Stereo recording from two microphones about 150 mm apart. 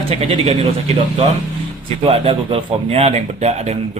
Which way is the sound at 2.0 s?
35° right (ahead or behind).